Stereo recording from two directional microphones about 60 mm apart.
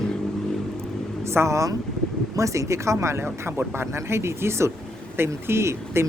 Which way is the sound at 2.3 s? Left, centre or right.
Right.